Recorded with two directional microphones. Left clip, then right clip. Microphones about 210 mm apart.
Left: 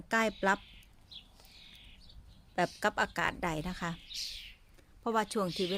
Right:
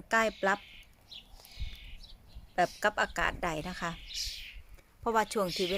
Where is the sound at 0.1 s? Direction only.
15° left (ahead or behind).